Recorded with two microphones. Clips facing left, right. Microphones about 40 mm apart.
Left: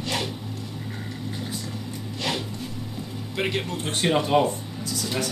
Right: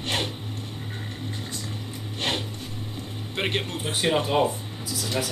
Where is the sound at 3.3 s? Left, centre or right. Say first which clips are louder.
Left 1 dB; right.